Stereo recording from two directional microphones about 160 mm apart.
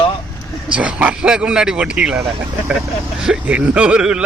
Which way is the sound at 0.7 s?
10° right (ahead or behind).